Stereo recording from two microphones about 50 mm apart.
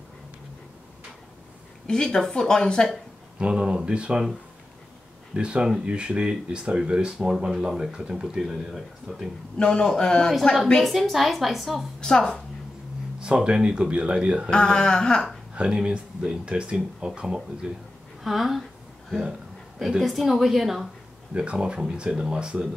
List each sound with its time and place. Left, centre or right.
1.9 s a woman's voice: centre
3.3 s speech: centre
9.6 s a woman's voice: centre
10.9 s speech: centre
12.0 s a woman's voice: centre
13.2 s speech: centre
14.5 s a woman's voice: centre
15.5 s speech: centre
18.2 s speech: centre
20.0 s speech: centre
21.3 s speech: right